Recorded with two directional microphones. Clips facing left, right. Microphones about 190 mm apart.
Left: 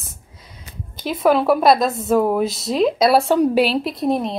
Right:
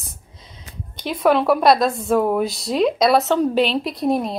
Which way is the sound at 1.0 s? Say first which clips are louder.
Left 1 dB; 5° left (ahead or behind).